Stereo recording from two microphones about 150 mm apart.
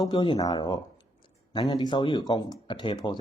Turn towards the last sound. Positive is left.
turn(degrees=35)  # may be behind; listen again after turning